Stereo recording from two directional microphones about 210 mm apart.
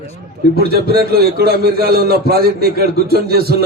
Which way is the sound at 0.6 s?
50° right (ahead or behind).